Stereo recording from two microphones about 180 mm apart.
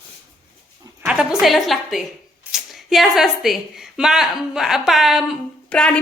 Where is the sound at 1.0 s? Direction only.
5° right (ahead or behind).